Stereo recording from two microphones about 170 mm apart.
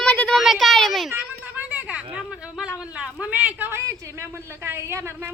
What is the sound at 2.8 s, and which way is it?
A man's voice, 5° right (ahead or behind).